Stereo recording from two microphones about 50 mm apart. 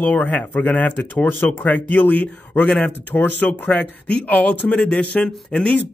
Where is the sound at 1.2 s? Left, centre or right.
Left.